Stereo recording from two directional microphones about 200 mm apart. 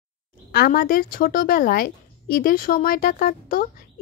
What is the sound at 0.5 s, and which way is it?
A woman's voice, 50° left (ahead or behind).